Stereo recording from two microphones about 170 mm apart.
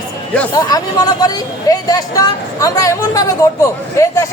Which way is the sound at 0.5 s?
25° left (ahead or behind).